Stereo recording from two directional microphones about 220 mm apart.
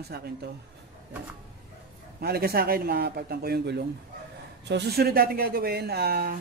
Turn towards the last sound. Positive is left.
turn(degrees=-45)  # may be behind; listen again after turning